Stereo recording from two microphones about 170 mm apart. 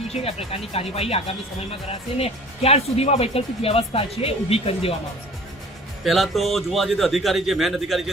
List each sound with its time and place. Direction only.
0.1 s speech: 35° left (ahead or behind)
6.1 s speech: centre (ahead or behind)